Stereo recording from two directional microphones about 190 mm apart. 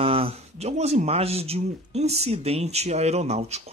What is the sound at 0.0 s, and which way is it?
Speech, 30° right (ahead or behind).